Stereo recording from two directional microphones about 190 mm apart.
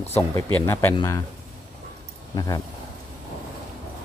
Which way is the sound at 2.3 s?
20° left (ahead or behind).